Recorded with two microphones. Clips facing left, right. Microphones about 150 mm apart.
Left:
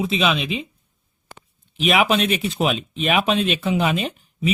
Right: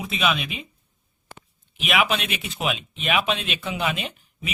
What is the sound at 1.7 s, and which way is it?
Speech, 35° left (ahead or behind).